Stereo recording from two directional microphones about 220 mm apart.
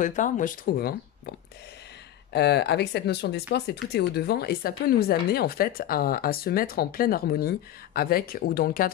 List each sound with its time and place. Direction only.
0.0 s speech: 35° left (ahead or behind)
2.3 s speech: 50° left (ahead or behind)